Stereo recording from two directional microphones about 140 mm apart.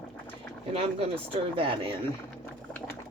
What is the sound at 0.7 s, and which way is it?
A man's voice, 40° right (ahead or behind).